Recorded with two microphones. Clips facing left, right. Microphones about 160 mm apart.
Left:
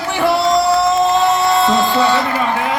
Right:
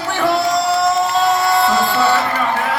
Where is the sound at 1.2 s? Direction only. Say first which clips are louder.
Left 1 dB; 20° left (ahead or behind).